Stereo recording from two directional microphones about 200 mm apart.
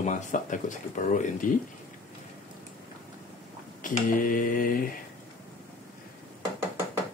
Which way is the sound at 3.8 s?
40° left (ahead or behind).